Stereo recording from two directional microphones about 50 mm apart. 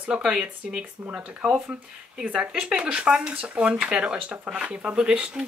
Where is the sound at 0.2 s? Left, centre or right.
Centre.